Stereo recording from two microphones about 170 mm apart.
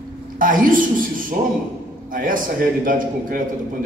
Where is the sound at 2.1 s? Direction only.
55° right (ahead or behind).